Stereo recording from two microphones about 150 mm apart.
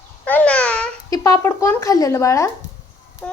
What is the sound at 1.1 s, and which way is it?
Speech, 25° left (ahead or behind).